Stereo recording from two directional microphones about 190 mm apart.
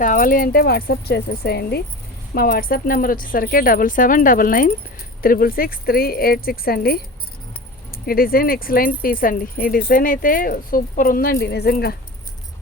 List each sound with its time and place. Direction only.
0.0 s speech: 45° left (ahead or behind)
8.0 s speech: 50° left (ahead or behind)